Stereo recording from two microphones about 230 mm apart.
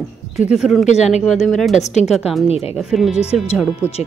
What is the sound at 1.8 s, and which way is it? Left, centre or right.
Speech, left.